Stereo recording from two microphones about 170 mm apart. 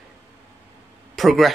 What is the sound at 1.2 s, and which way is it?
Speech, centre (ahead or behind).